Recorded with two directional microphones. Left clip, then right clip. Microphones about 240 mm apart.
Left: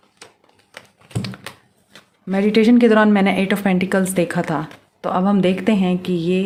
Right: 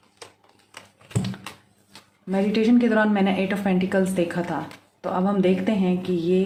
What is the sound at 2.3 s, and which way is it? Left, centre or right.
A woman's voice, left.